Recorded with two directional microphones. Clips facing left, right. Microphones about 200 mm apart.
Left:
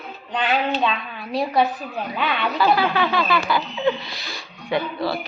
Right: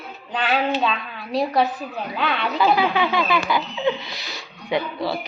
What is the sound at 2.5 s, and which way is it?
Speech, 10° right (ahead or behind).